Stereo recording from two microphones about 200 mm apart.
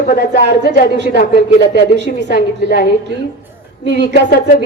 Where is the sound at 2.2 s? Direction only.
50° left (ahead or behind).